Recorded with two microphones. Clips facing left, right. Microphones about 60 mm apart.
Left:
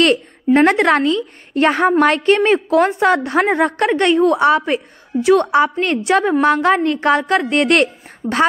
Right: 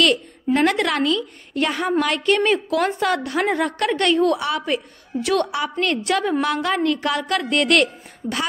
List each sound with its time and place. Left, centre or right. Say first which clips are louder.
0.0 s a woman's voice: left 4 dB; left